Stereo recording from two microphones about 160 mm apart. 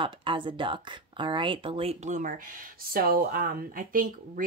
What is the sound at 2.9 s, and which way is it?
Speech, 70° right (ahead or behind).